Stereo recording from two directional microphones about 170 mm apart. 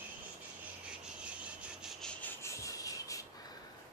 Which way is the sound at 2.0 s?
10° left (ahead or behind).